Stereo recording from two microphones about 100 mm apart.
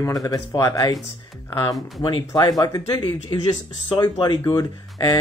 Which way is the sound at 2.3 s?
40° left (ahead or behind).